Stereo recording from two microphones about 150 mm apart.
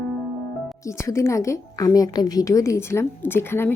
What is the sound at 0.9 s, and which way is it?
A woman's voice, 20° left (ahead or behind).